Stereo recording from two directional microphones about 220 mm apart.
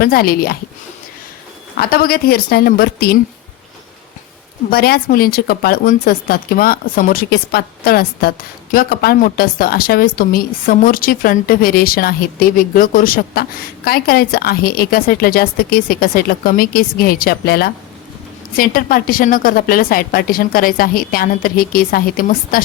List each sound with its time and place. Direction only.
0.0 s speech: 45° left (ahead or behind)
1.7 s speech: 45° left (ahead or behind)
4.7 s speech: 45° left (ahead or behind)